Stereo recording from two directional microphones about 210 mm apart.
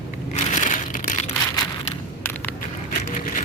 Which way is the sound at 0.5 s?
40° left (ahead or behind).